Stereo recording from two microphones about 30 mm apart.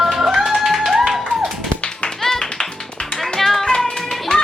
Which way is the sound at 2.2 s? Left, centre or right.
Centre.